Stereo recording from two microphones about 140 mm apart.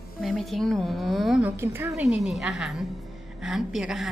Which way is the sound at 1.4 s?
15° right (ahead or behind).